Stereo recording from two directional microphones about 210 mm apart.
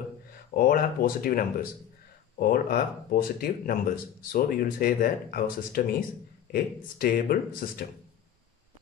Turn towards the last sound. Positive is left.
turn(degrees=45)  # may be behind; listen again after turning